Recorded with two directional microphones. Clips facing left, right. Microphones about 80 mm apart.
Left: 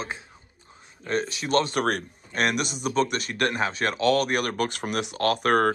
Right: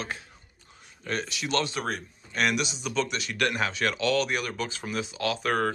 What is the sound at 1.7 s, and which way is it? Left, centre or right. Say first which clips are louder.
Speech: left 6 dB; left.